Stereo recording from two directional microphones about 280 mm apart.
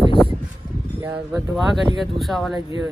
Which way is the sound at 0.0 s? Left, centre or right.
Centre.